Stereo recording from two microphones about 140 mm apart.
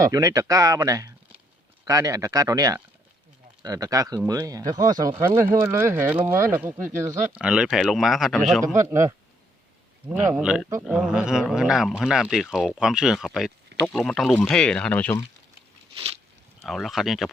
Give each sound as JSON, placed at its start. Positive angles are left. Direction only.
{"t": 0.0, "sound": "speech", "side_deg": -25}
{"t": 7.4, "sound": "speech", "side_deg": -5}
{"t": 8.6, "sound": "speech", "side_deg": -20}
{"t": 16.6, "sound": "speech", "side_deg": 0}